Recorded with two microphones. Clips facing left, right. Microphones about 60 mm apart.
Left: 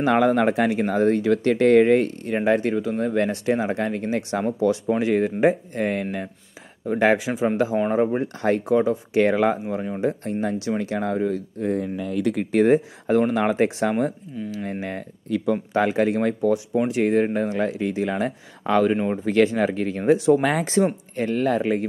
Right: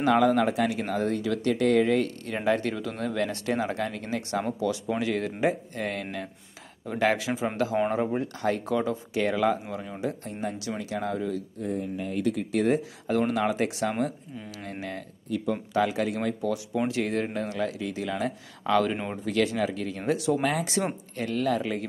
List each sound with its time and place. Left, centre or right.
0.0 s speech: left
9.2 s speech: left
11.6 s speech: left
12.5 s speech: left
15.2 s speech: left
15.5 s speech: left
16.3 s speech: left
18.8 s speech: centre
19.2 s speech: left
20.0 s speech: left
21.2 s speech: left